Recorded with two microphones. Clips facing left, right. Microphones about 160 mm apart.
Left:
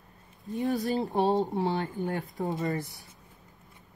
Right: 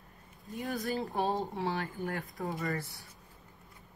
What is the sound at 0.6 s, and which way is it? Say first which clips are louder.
Speech: left 6 dB; 20° left (ahead or behind).